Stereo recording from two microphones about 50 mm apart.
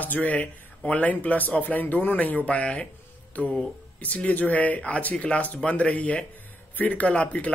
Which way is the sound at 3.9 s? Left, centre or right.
Left.